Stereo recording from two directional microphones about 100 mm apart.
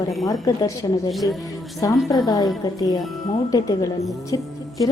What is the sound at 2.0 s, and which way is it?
Speech, 35° left (ahead or behind).